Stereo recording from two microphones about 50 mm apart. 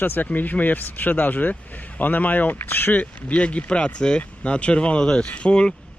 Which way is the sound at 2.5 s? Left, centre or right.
Left.